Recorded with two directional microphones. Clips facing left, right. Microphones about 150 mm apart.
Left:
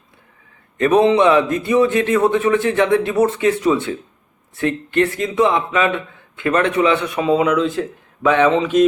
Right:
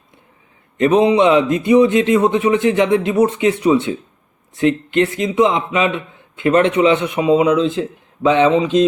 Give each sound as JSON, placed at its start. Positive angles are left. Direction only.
{"t": 0.8, "sound": "a man's voice", "side_deg": -20}